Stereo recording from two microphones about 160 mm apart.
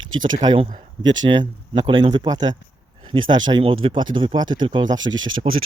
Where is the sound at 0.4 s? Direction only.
35° right (ahead or behind).